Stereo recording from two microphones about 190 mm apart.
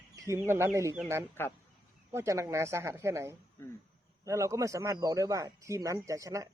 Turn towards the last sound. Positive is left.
turn(degrees=-15)  # may be behind; listen again after turning